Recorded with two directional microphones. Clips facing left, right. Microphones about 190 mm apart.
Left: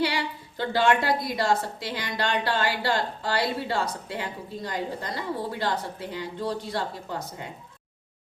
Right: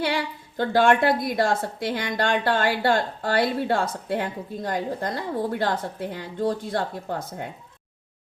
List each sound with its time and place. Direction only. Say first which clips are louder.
0.0 s a woman's voice: right 1 dB; 50° right (ahead or behind)